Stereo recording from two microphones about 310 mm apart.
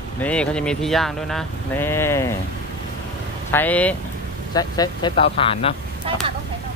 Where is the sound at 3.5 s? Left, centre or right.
Centre.